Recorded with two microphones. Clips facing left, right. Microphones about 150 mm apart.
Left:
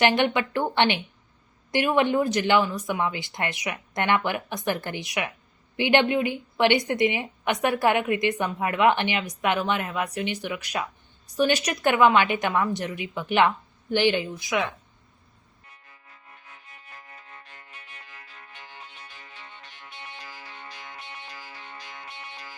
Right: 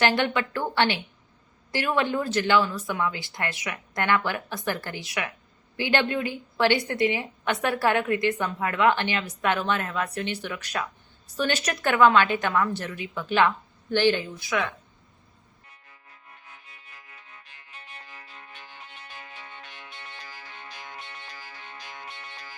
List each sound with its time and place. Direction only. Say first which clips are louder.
0.0 s a woman's voice: left 2 dB; 20° left (ahead or behind)